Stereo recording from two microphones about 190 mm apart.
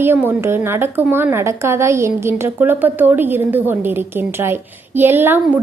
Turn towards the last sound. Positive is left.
turn(degrees=-10)  # may be behind; listen again after turning